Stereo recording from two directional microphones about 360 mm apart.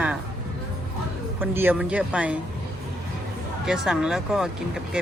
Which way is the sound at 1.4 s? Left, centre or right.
Centre.